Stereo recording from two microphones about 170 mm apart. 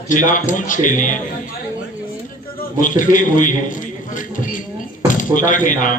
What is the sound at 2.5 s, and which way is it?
A man's voice, 50° left (ahead or behind).